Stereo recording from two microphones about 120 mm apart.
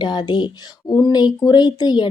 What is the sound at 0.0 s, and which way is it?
A woman's voice, 40° left (ahead or behind).